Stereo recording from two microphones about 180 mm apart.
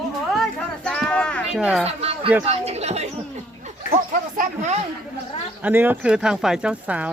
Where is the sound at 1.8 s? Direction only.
35° right (ahead or behind).